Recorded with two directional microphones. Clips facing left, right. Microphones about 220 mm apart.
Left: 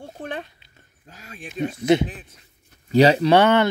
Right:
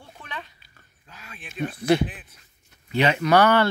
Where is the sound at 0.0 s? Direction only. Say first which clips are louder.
Left 8 dB; 45° left (ahead or behind).